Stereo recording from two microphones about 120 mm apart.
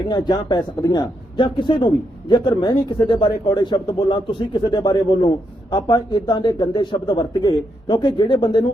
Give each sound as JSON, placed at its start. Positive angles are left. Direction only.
{"t": 0.1, "sound": "speech", "side_deg": 35}